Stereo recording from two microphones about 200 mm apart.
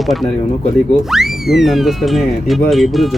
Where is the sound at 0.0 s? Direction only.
Centre (ahead or behind).